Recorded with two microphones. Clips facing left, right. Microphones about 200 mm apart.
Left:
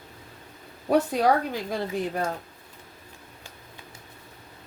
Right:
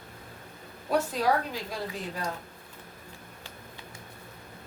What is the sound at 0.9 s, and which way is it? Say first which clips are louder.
A woman's voice: left 5 dB; 55° left (ahead or behind).